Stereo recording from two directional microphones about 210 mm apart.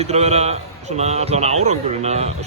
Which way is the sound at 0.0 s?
30° right (ahead or behind).